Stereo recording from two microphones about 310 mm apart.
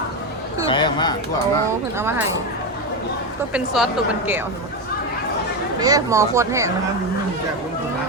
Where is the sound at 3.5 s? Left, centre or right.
Centre.